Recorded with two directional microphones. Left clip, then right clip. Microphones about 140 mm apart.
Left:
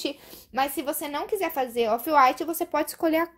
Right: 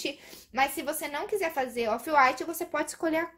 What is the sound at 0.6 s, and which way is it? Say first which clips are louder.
A woman's voice: left 1 dB; 50° left (ahead or behind).